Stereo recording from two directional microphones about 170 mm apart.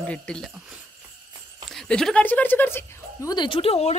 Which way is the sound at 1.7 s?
Centre (ahead or behind).